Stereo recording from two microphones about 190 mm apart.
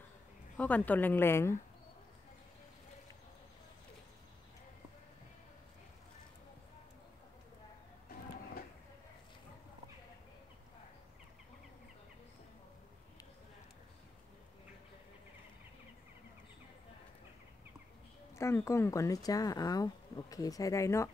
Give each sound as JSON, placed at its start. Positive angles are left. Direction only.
{"t": 0.6, "sound": "speech", "side_deg": 10}
{"t": 18.3, "sound": "speech", "side_deg": 15}